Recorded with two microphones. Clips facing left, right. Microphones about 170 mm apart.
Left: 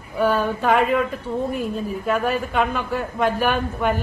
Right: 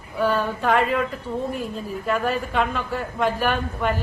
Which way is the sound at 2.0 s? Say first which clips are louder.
Left 1 dB; 5° left (ahead or behind).